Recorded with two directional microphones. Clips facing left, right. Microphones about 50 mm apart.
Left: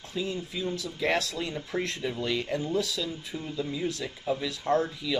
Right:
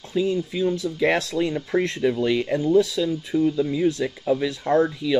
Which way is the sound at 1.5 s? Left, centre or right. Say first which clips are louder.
Right 8 dB; right.